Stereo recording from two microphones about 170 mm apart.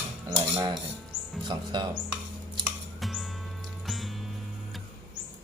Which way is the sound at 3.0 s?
Centre (ahead or behind).